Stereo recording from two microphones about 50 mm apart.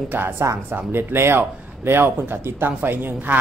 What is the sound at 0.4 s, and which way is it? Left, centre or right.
Speech, right.